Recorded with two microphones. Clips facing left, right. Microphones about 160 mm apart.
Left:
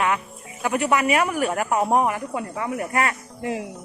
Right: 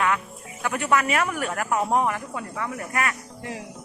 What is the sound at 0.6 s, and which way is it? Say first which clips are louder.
Speech: left 2 dB; 15° left (ahead or behind).